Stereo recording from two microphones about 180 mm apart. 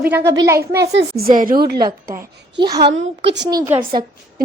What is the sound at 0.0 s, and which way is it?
Speech, 10° right (ahead or behind).